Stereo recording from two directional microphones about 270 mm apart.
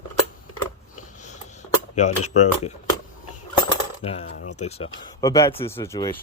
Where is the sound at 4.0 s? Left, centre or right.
Left.